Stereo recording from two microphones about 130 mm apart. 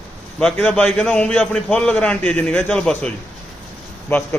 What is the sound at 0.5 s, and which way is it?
A man's voice, 10° left (ahead or behind).